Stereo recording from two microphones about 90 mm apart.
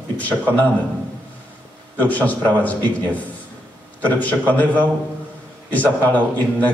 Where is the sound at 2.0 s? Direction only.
15° left (ahead or behind).